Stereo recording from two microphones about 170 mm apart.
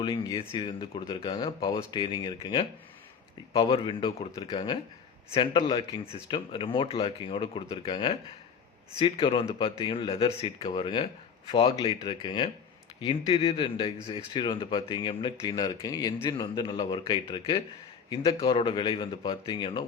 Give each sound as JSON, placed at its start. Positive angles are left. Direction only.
{"t": 0.0, "sound": "speech", "side_deg": 25}